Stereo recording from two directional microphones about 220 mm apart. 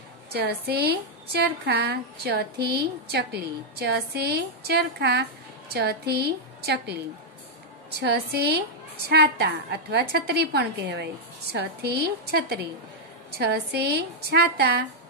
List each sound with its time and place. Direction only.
0.3 s a woman's voice: 45° right (ahead or behind)